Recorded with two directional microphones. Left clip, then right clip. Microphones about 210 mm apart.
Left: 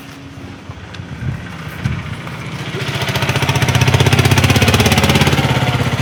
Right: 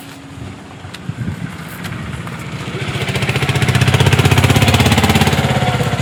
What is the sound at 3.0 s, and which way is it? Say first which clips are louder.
Jackhammer: left 1 dB; 5° left (ahead or behind).